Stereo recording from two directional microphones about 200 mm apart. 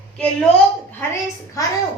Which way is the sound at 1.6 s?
15° left (ahead or behind).